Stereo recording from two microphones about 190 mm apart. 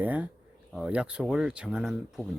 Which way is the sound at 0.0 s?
10° right (ahead or behind).